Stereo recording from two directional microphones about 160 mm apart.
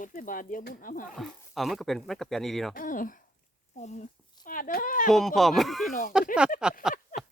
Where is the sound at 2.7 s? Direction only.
60° left (ahead or behind).